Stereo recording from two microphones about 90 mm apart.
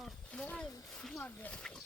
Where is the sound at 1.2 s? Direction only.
20° left (ahead or behind).